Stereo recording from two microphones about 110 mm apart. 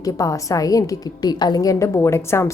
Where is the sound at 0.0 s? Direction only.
30° left (ahead or behind).